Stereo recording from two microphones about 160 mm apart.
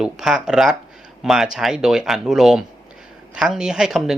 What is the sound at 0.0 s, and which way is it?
Speech, 5° right (ahead or behind).